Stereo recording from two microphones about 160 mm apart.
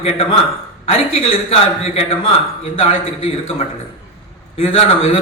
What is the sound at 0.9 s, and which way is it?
A man's voice, 40° left (ahead or behind).